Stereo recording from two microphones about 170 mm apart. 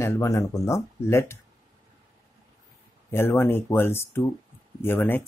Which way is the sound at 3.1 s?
15° left (ahead or behind).